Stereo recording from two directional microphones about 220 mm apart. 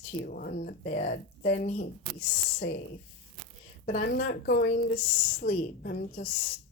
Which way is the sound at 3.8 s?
30° left (ahead or behind).